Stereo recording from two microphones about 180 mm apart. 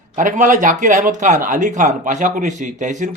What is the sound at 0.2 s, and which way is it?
Speech, 45° right (ahead or behind).